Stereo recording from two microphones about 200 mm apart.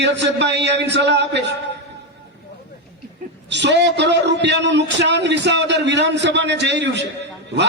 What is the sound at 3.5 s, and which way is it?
A man's voice, 60° right (ahead or behind).